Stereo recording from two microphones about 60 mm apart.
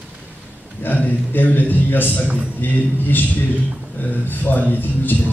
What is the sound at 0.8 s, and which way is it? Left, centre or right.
A man's voice, left.